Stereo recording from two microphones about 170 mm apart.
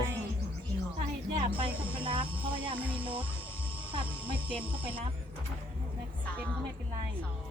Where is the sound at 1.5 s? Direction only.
30° right (ahead or behind).